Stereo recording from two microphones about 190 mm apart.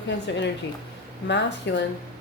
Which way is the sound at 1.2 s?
65° left (ahead or behind).